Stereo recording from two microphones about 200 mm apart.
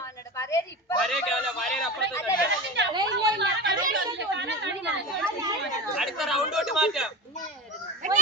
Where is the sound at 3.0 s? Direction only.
60° right (ahead or behind); by 4.0 s 45° right (ahead or behind).